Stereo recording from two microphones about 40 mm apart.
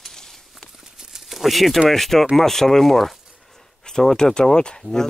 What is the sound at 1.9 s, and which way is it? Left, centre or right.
Speech, centre.